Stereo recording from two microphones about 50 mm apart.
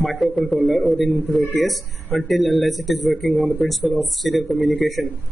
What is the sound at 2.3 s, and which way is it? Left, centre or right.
A man's voice, centre.